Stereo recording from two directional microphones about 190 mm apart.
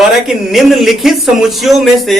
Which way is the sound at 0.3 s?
Centre (ahead or behind).